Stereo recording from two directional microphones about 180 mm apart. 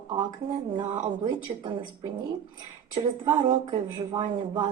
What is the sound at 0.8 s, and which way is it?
Speech, 25° right (ahead or behind).